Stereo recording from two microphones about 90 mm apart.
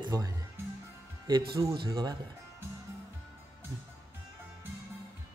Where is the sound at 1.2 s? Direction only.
45° right (ahead or behind).